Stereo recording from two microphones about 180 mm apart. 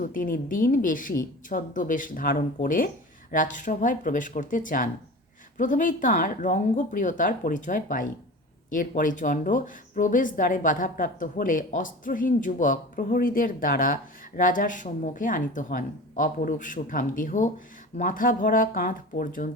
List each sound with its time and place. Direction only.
0.0 s speech: 50° left (ahead or behind)